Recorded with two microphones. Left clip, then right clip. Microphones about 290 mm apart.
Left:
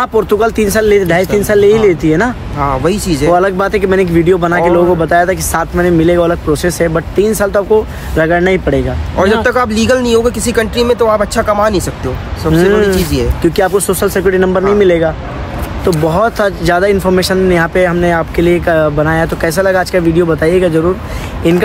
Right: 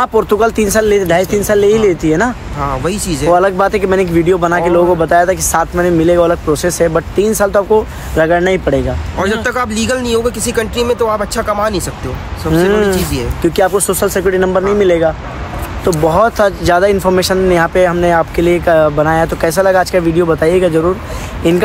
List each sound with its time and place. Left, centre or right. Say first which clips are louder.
0.0 s speech: even; centre